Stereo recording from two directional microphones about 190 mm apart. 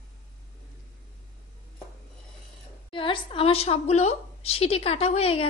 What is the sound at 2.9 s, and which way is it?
A woman's voice, 25° left (ahead or behind).